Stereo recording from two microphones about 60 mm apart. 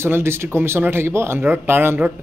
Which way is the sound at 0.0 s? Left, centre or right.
Right.